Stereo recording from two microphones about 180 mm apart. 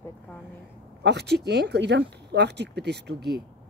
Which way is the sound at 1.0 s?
70° right (ahead or behind).